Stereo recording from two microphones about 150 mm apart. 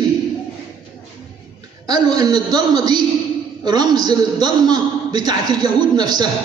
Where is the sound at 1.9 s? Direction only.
25° right (ahead or behind).